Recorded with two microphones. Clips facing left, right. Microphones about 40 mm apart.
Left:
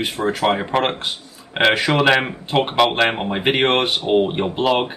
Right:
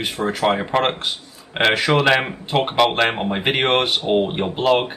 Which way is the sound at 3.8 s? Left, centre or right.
Centre.